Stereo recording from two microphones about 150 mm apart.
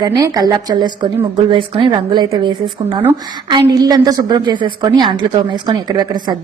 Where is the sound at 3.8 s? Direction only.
25° right (ahead or behind).